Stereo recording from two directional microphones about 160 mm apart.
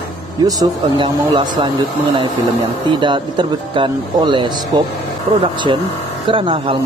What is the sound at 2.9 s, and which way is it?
A man's voice, 30° right (ahead or behind).